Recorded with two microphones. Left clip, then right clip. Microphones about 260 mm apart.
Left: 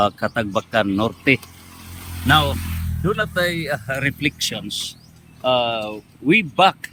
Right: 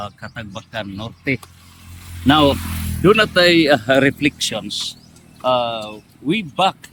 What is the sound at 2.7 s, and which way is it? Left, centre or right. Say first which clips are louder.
Snake: right 5 dB; right.